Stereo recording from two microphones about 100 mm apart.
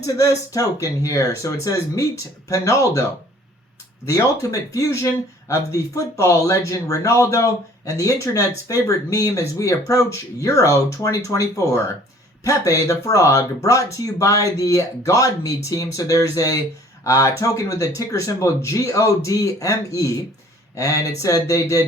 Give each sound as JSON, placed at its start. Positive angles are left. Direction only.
{"t": 0.0, "sound": "speech", "side_deg": 35}